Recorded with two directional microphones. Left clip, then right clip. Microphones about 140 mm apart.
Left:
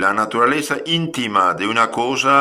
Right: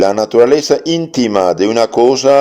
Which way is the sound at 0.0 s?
40° right (ahead or behind).